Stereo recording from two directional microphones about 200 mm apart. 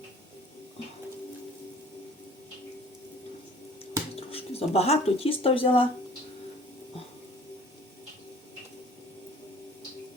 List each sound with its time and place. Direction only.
4.1 s speech: 30° left (ahead or behind)